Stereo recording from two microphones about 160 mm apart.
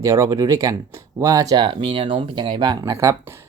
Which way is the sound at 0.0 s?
20° right (ahead or behind).